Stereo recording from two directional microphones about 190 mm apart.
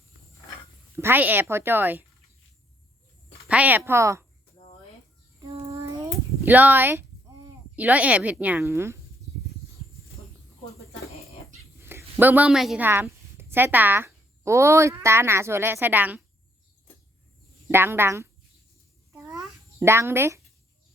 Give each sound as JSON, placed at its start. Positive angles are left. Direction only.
{"t": 0.9, "sound": "a woman's voice", "side_deg": -10}
{"t": 3.4, "sound": "a woman's voice", "side_deg": -5}
{"t": 5.5, "sound": "child singing", "side_deg": -30}
{"t": 5.7, "sound": "a sound", "side_deg": -15}
{"t": 7.8, "sound": "a woman's voice", "side_deg": -5}
{"t": 11.9, "sound": "a woman's voice", "side_deg": -10}
{"t": 17.7, "sound": "a woman's voice", "side_deg": -10}
{"t": 19.1, "sound": "babbling", "side_deg": -15}